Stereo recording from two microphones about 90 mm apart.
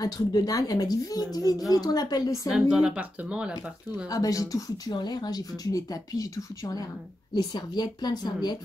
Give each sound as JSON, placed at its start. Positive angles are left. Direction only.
{"t": 0.0, "sound": "speech", "side_deg": 45}
{"t": 2.7, "sound": "speech", "side_deg": -10}
{"t": 4.1, "sound": "speech", "side_deg": 40}
{"t": 7.3, "sound": "speech", "side_deg": 50}